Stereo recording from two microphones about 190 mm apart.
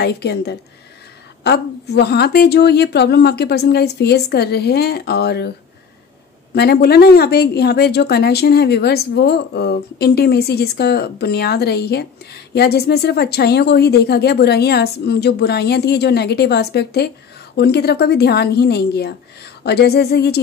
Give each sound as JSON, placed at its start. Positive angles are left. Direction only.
{"t": 0.0, "sound": "a woman's voice", "side_deg": 60}
{"t": 6.5, "sound": "a woman's voice", "side_deg": 55}